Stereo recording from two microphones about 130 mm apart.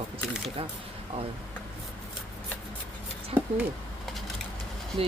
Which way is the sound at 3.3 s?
50° right (ahead or behind).